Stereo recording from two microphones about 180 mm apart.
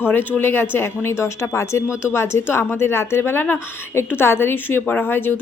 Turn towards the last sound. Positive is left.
turn(degrees=10)  # may be behind; listen again after turning